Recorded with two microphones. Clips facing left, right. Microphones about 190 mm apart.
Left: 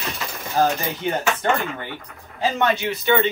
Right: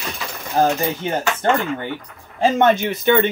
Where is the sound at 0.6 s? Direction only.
25° right (ahead or behind).